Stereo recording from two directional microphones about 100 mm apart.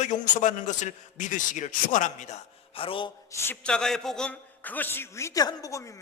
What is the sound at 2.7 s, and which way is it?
Mantra, 65° left (ahead or behind).